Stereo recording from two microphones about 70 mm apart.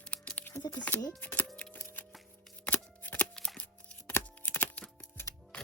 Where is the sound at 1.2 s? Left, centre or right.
Left.